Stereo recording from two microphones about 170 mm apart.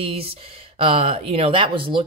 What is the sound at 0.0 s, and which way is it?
Speech, 35° right (ahead or behind).